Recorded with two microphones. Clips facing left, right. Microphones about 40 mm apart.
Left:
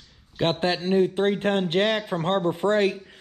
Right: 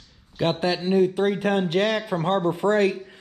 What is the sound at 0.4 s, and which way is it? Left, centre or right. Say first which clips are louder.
A man's voice: even; left.